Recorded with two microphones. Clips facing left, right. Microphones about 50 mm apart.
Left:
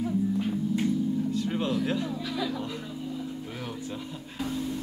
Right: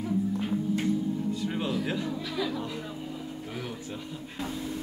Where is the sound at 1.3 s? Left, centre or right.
Centre.